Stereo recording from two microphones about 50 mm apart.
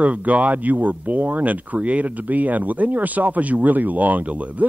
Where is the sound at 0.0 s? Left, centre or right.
Right.